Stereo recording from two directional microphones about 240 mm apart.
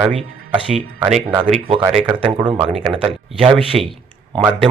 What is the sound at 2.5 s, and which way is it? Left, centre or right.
Speech, centre.